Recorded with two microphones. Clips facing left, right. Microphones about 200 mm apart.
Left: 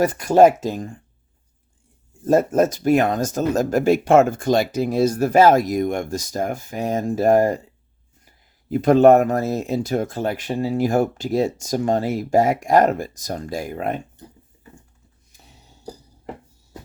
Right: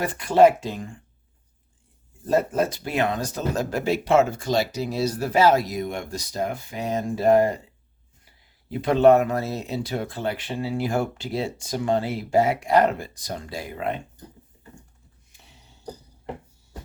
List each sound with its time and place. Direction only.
0.0 s speech: 40° left (ahead or behind)
2.2 s speech: 45° left (ahead or behind)
8.7 s speech: 45° left (ahead or behind)